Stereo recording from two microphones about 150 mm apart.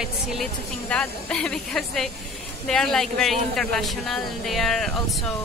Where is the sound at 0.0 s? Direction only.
5° right (ahead or behind).